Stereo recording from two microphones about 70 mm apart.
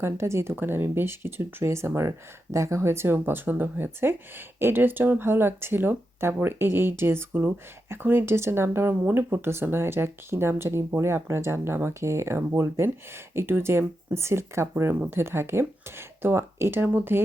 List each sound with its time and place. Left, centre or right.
0.0 s speech: right
0.5 s speech: right